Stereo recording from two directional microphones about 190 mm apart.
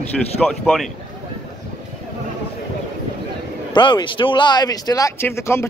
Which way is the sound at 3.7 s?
25° left (ahead or behind).